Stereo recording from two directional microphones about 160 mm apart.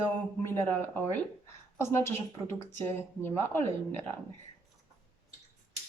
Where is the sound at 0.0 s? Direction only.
15° left (ahead or behind).